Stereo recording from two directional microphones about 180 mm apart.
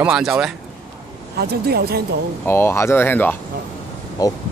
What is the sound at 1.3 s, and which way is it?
Speech, 60° right (ahead or behind).